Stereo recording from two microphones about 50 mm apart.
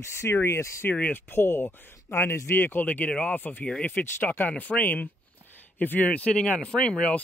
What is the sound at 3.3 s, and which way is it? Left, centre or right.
Speech, left.